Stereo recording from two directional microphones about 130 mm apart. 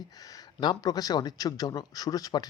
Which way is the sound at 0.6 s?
35° left (ahead or behind).